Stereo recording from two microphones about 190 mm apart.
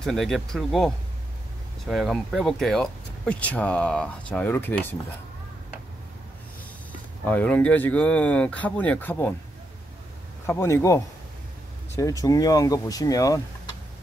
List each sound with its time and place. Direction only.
0.0 s speech: centre (ahead or behind)
7.2 s speech: 10° left (ahead or behind)
10.4 s speech: 15° left (ahead or behind)
12.0 s speech: 15° left (ahead or behind)